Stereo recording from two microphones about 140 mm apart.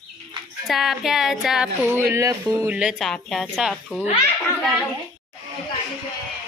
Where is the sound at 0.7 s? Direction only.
Centre (ahead or behind).